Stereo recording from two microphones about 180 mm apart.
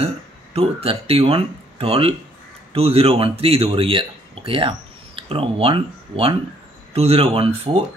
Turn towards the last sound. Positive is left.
turn(degrees=-35)  # may be behind; listen again after turning